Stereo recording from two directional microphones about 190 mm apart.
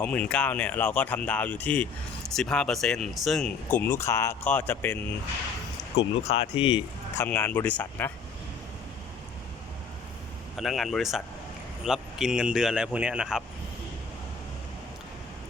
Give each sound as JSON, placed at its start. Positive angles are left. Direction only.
{"t": 0.0, "sound": "speech", "side_deg": 5}
{"t": 6.0, "sound": "speech", "side_deg": 30}
{"t": 7.2, "sound": "speech", "side_deg": 10}
{"t": 10.6, "sound": "speech", "side_deg": 0}